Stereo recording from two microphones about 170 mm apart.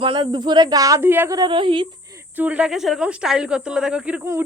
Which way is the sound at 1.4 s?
30° right (ahead or behind).